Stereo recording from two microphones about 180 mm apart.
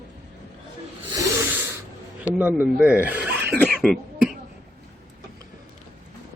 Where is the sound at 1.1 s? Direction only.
10° right (ahead or behind).